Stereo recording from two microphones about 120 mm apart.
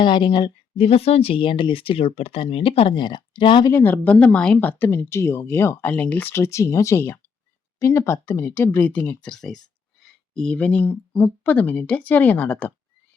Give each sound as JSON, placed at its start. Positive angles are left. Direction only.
{"t": 0.0, "sound": "a woman's voice", "side_deg": 45}
{"t": 0.9, "sound": "speech", "side_deg": 60}
{"t": 3.7, "sound": "speech", "side_deg": 20}
{"t": 10.0, "sound": "a sound", "side_deg": 5}
{"t": 11.2, "sound": "speech", "side_deg": 15}